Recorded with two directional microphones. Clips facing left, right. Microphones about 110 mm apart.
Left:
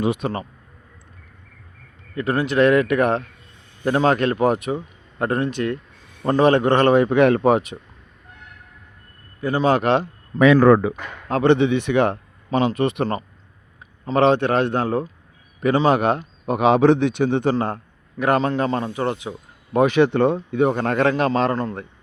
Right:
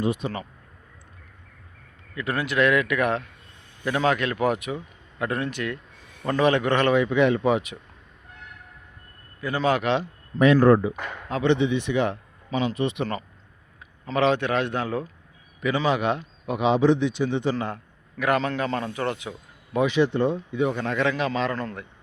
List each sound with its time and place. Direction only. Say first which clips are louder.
0.0 s speech: left 4 dB; 70° left (ahead or behind)
2.1 s speech: left 5 dB; 30° left (ahead or behind)
5.5 s a man's voice: left 6 dB; 25° left (ahead or behind); by 7.6 s 50° left (ahead or behind)
9.4 s speech: left 5 dB; 30° left (ahead or behind)
10.0 s speech: left 4 dB; 80° left
11.3 s a man's voice: left 6 dB; 50° left (ahead or behind)
14.0 s a man's voice: left 5 dB; 35° left (ahead or behind); by 17.7 s 50° left (ahead or behind)
18.2 s a man's voice: left 5 dB; 30° left (ahead or behind)
19.7 s a man's voice: left 5 dB; 55° left (ahead or behind)
21.5 s a man's voice: left 6 dB; 25° left (ahead or behind)